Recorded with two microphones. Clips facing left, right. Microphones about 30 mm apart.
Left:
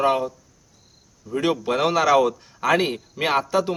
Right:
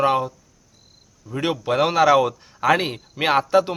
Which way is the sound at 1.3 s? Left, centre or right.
Centre.